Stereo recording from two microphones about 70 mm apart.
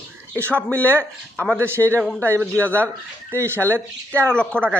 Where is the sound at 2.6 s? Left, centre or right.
Left.